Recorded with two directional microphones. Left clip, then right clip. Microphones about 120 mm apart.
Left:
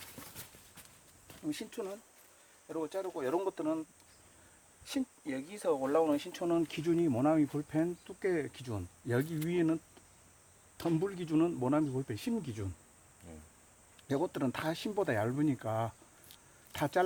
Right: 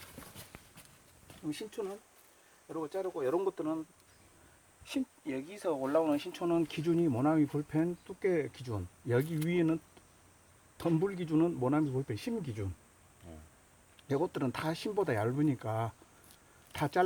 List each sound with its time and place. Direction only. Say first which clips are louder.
0.2 s clip-clop: even; centre (ahead or behind)
1.5 s speech: even; 55° left (ahead or behind)
2.7 s speech: right 1 dB; 65° left (ahead or behind)
5.2 s speech: left 1 dB; 30° left (ahead or behind); by 12.6 s 15° left (ahead or behind)
14.1 s speech: right 1 dB; 15° left (ahead or behind)
16.3 s a sound: even; 10° left (ahead or behind)